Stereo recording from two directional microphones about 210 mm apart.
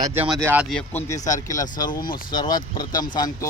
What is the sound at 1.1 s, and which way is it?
Speech, 15° left (ahead or behind).